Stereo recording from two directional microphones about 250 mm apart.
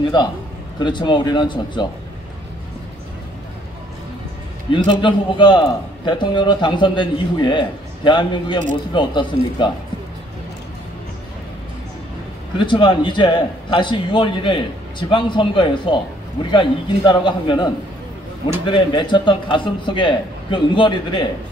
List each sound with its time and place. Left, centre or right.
0.7 s a man's voice: centre
4.7 s a man's voice: centre
12.5 s a man's voice: centre
18.7 s a man's voice: centre